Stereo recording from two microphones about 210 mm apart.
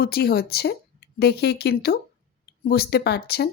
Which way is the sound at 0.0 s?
50° left (ahead or behind).